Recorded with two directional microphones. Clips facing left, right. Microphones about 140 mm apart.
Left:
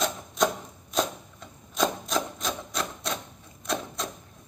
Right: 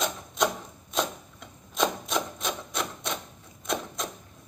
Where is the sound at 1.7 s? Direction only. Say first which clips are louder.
Left 1 dB; centre (ahead or behind).